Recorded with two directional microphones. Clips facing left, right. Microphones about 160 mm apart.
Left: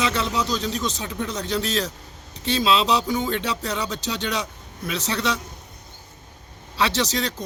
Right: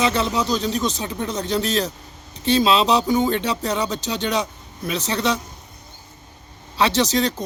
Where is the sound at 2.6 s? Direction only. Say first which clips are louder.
Right 2 dB; 45° right (ahead or behind).